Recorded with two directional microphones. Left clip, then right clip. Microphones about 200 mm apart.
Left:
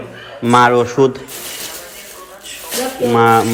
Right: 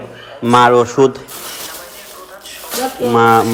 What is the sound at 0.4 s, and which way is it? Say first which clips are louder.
Speech: right 1 dB; 15° right (ahead or behind).